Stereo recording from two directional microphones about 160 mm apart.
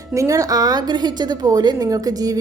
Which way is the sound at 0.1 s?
20° right (ahead or behind).